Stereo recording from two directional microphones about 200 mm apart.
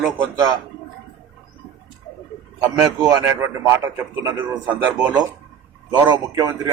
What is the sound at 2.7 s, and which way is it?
A man's voice, 20° right (ahead or behind).